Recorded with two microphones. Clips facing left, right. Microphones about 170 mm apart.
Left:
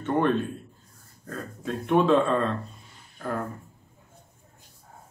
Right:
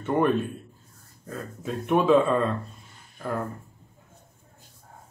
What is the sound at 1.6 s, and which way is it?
Speech, 5° right (ahead or behind).